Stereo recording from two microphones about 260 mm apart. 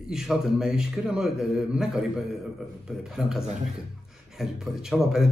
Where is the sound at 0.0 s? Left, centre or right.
Centre.